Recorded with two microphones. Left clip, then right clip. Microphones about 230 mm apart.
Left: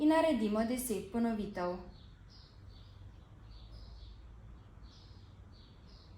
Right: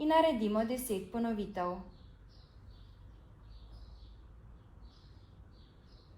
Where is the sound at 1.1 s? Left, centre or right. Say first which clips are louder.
Even; right.